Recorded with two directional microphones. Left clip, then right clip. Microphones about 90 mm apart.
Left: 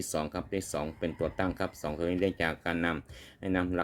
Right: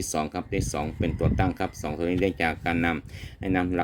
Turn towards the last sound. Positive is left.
turn(degrees=-25)  # may be behind; listen again after turning